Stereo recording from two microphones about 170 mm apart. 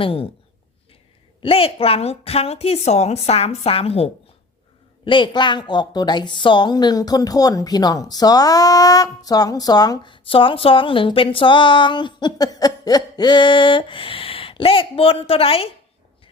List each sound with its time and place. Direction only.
0.0 s a woman's voice: 35° left (ahead or behind)
1.4 s a woman's voice: 35° left (ahead or behind)